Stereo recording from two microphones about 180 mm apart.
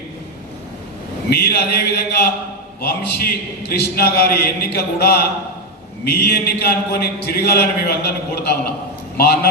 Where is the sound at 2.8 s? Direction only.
60° left (ahead or behind).